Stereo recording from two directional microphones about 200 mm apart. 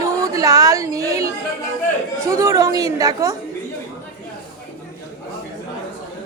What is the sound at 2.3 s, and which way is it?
Speech, 15° right (ahead or behind).